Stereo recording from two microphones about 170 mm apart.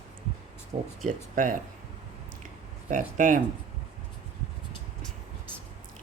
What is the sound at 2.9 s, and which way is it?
Speech, 50° right (ahead or behind).